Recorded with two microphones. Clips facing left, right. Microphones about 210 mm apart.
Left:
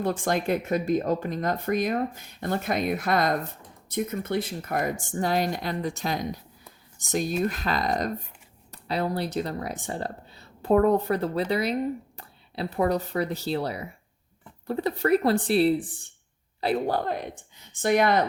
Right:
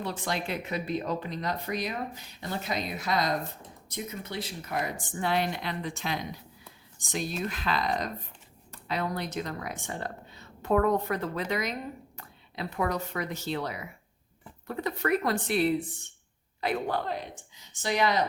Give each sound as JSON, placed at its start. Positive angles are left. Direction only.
{"t": 0.0, "sound": "speech", "side_deg": 50}
{"t": 8.9, "sound": "speech", "side_deg": 35}